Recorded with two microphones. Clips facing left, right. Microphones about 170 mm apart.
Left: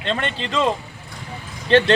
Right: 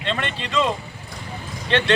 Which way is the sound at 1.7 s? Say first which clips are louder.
Left 6 dB; 40° left (ahead or behind).